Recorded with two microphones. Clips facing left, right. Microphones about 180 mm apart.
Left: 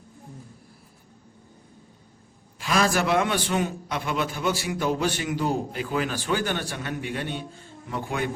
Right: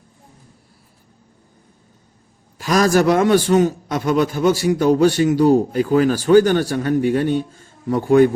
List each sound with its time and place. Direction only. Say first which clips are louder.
2.6 s a man's voice: right 8 dB; 40° right (ahead or behind)